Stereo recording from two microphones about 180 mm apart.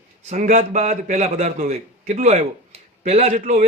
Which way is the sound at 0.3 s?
40° right (ahead or behind).